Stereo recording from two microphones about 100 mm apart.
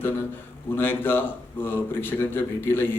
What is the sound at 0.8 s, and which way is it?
A man's voice, 20° left (ahead or behind).